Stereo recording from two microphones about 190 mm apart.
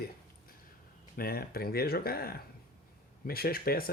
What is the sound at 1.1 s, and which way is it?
Speech, 50° left (ahead or behind).